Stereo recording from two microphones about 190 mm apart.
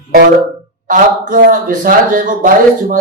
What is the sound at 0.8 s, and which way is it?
Speech, 45° right (ahead or behind).